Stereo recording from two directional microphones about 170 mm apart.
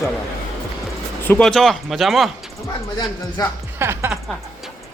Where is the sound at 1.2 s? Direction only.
10° left (ahead or behind).